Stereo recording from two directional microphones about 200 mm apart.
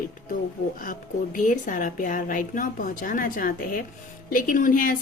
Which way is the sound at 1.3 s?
40° left (ahead or behind).